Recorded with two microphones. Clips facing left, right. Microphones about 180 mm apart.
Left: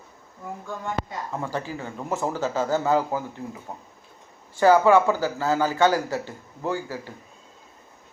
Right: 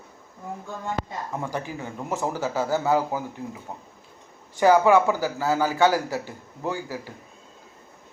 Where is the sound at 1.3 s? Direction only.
15° right (ahead or behind).